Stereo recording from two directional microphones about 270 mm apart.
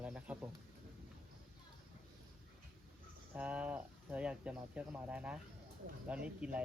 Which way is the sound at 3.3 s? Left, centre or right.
Centre.